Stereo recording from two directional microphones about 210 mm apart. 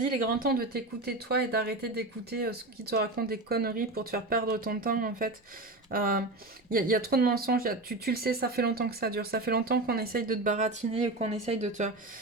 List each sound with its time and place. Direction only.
0.3 s speech: 45° right (ahead or behind)